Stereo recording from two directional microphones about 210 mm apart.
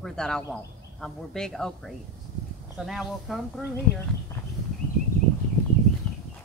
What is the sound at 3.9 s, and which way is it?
Speech, 50° left (ahead or behind).